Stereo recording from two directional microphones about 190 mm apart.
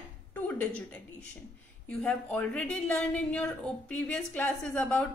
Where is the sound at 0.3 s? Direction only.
10° left (ahead or behind).